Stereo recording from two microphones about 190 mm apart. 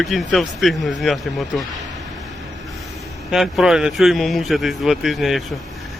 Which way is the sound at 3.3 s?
Centre (ahead or behind).